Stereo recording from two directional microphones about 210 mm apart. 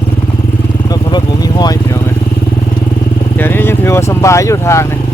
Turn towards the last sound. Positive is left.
turn(degrees=15)  # may be behind; listen again after turning